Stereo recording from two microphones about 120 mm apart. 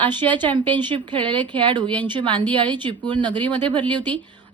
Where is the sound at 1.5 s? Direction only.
40° right (ahead or behind).